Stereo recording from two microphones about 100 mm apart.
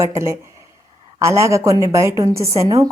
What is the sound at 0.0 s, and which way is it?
A woman's voice, 30° right (ahead or behind).